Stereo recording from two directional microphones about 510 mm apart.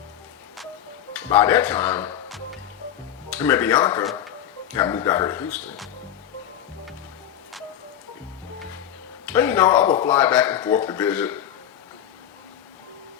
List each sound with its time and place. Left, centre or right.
1.1 s speech: centre
9.2 s speech: centre